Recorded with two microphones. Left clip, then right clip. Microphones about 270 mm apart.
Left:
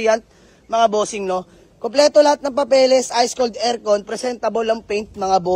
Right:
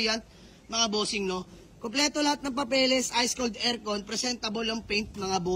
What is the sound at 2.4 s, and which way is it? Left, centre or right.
Speech, centre.